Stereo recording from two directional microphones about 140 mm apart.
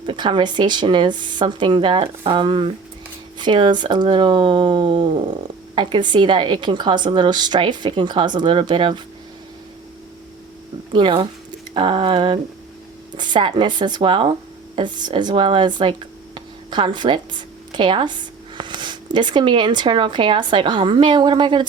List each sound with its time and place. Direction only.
0.0 s a woman's voice: 35° right (ahead or behind)
10.9 s a woman's voice: 35° right (ahead or behind)